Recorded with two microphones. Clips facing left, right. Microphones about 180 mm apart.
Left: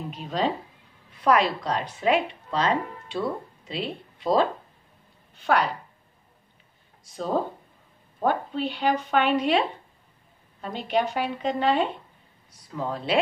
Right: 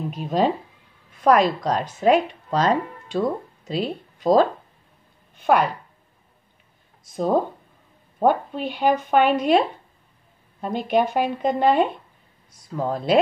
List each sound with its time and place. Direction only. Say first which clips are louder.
0.1 s speech: right 5 dB; 50° right (ahead or behind)
7.1 s speech: right 5 dB; 50° right (ahead or behind)